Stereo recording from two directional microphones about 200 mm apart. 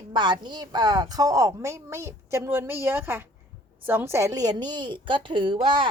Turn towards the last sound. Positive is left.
turn(degrees=-25)  # may be behind; listen again after turning